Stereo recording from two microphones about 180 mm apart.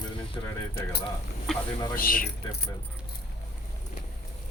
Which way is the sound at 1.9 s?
55° left (ahead or behind).